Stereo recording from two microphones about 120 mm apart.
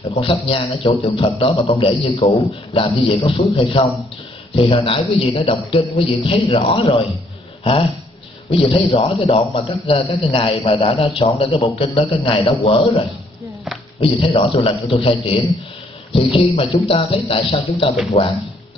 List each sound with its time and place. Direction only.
0.1 s a man's voice: 45° left (ahead or behind)
8.5 s a man's voice: 45° left (ahead or behind)